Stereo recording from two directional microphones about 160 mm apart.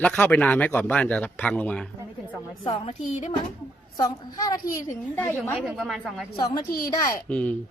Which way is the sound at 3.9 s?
25° left (ahead or behind).